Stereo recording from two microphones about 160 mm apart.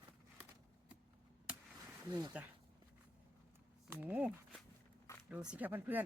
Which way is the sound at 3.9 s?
10° right (ahead or behind).